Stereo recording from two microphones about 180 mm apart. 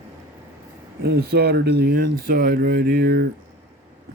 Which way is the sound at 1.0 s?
65° right (ahead or behind).